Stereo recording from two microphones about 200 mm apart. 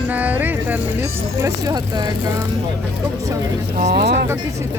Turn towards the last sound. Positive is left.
turn(degrees=-55)  # may be behind; listen again after turning